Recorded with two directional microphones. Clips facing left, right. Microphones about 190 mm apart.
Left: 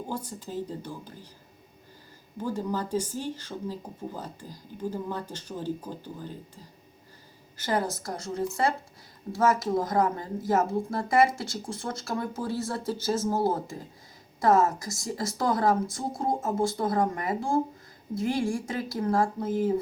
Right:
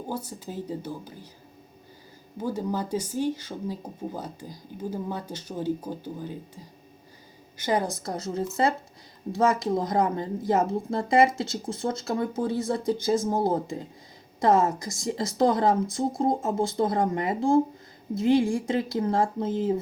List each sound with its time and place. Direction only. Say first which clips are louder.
0.3 s speech: right 1 dB; 10° right (ahead or behind)
2.4 s a woman's voice: right 1 dB; 10° right (ahead or behind)